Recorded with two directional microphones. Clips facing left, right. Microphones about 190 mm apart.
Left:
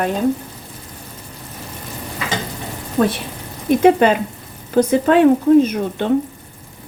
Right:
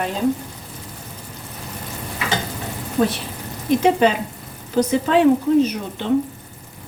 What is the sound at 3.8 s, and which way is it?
Speech, 55° left (ahead or behind).